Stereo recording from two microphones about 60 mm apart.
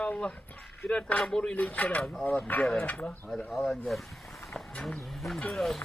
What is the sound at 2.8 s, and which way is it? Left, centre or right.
Speech, left.